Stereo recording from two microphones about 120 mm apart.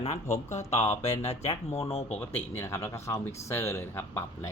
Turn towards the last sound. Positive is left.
turn(degrees=20)  # may be behind; listen again after turning